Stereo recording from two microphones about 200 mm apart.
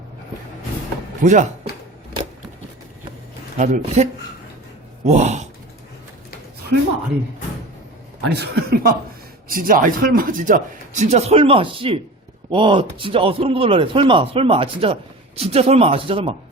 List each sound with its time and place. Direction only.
1.2 s speech: 40° right (ahead or behind)
3.6 s speech: 35° right (ahead or behind)
8.2 s a man's voice: 55° right (ahead or behind); by 16.3 s 30° right (ahead or behind)